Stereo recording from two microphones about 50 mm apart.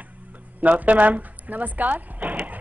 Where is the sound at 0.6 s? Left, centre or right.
Right.